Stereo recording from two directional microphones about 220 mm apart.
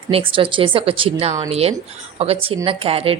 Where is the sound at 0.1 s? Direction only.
25° right (ahead or behind).